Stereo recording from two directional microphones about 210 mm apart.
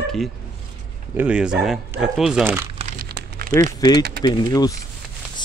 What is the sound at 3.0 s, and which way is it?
Crumpling, 50° right (ahead or behind).